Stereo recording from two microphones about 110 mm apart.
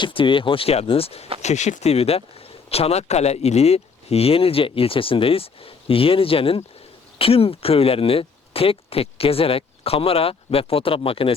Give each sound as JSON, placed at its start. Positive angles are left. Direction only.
{"t": 0.0, "sound": "speech", "side_deg": 50}
{"t": 1.4, "sound": "speech", "side_deg": 90}